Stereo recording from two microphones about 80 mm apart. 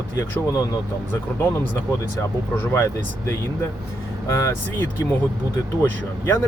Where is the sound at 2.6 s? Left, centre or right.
Left.